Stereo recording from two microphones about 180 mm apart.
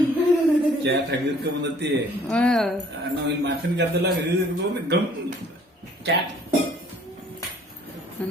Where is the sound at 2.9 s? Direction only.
75° right (ahead or behind).